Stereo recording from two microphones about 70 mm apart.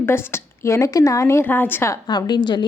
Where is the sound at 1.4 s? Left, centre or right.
Left.